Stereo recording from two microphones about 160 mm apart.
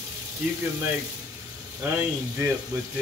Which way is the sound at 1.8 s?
15° right (ahead or behind).